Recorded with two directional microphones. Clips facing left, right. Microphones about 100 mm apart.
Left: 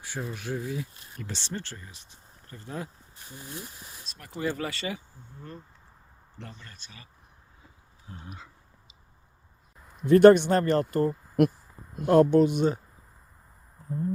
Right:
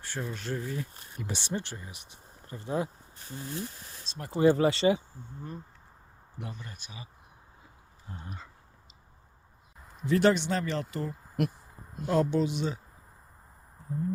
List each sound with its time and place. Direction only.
0.0 s speech: 10° left (ahead or behind)
1.2 s speech: 15° right (ahead or behind)
4.0 s speech: 25° right (ahead or behind)
8.1 s speech: centre (ahead or behind)
10.1 s speech: 50° left (ahead or behind)